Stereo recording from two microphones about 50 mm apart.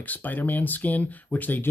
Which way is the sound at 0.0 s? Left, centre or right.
Left.